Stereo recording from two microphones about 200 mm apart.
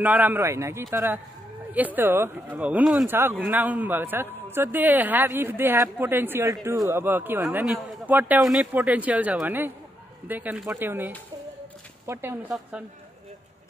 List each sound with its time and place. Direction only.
0.0 s speech: 10° right (ahead or behind)
12.4 s a woman's voice: centre (ahead or behind)